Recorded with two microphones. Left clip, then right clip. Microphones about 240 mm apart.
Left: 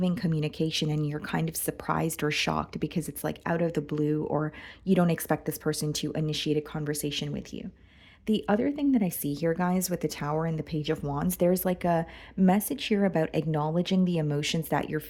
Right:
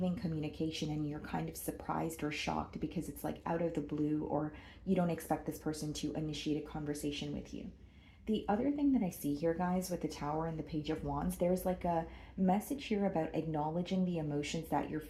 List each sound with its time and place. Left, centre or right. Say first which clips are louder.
0.0 s speech: left 9 dB; left
8.3 s speech: left 8 dB; left